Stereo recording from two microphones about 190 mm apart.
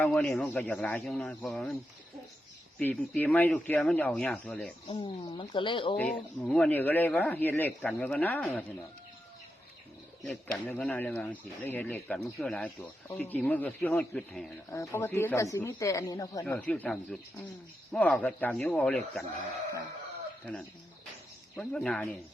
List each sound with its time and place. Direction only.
0.0 s speech: 5° left (ahead or behind)
2.7 s a man's voice: 5° left (ahead or behind)
4.9 s speech: 25° left (ahead or behind)
6.0 s a man's voice: 5° left (ahead or behind)
10.2 s a man's voice: 5° left (ahead or behind)
14.7 s a man's voice: 15° left (ahead or behind)
20.4 s speech: 5° left (ahead or behind)